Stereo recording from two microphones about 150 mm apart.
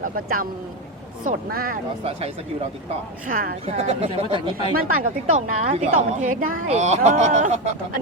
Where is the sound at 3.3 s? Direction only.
70° right (ahead or behind).